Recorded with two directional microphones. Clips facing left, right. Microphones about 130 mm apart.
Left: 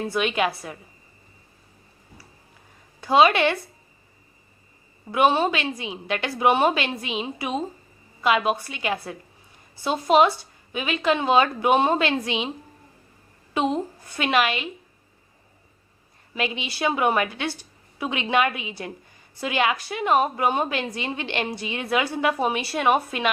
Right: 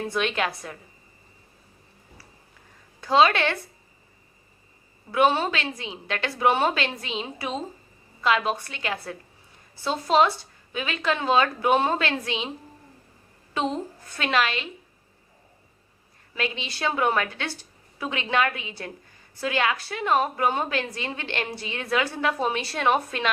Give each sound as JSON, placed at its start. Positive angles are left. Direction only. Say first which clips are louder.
{"t": 0.1, "sound": "a woman's voice", "louder": "left 4 dB", "side_deg": 10}
{"t": 3.0, "sound": "a woman's voice", "louder": "left 2 dB", "side_deg": 15}
{"t": 5.1, "sound": "a woman's voice", "louder": "left 2 dB", "side_deg": 15}
{"t": 13.5, "sound": "a woman's voice", "louder": "left 3 dB", "side_deg": 15}
{"t": 16.3, "sound": "a woman's voice", "louder": "left 2 dB", "side_deg": 15}